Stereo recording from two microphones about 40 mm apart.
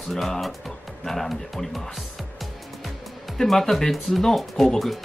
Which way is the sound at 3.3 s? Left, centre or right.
Centre.